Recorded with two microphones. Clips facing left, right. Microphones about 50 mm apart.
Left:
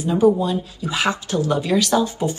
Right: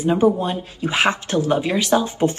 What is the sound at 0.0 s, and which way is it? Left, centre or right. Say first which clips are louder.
A woman's voice: even; right.